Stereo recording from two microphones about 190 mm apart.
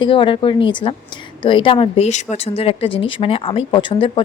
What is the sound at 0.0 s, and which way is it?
Speech, 25° left (ahead or behind).